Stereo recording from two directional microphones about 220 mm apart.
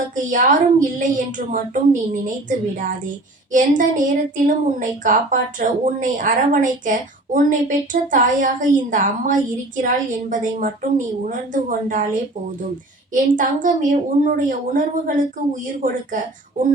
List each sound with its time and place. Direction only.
0.3 s speech: 35° right (ahead or behind)